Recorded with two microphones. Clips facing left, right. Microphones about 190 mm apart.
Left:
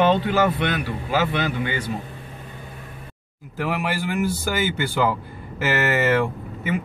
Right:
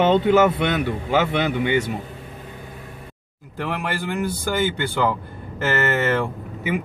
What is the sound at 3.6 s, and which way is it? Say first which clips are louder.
Speech: left 1 dB; 5° left (ahead or behind).